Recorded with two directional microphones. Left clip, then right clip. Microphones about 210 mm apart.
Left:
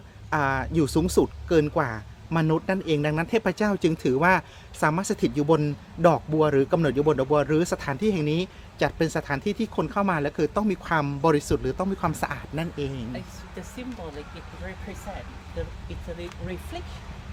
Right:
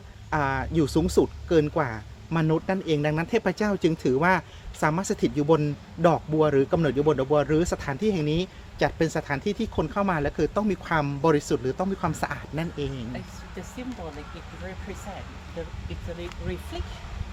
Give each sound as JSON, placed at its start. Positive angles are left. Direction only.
{"t": 0.3, "sound": "speech", "side_deg": 15}
{"t": 15.6, "sound": "speech", "side_deg": 30}